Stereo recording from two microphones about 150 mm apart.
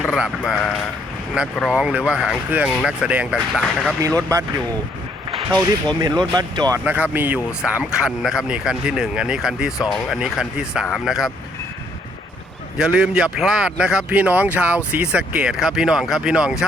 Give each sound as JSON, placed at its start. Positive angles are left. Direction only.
{"t": 0.1, "sound": "speech", "side_deg": -5}
{"t": 4.0, "sound": "speech", "side_deg": -20}
{"t": 5.5, "sound": "speech", "side_deg": -30}
{"t": 6.8, "sound": "speech", "side_deg": -10}
{"t": 12.7, "sound": "speech", "side_deg": -5}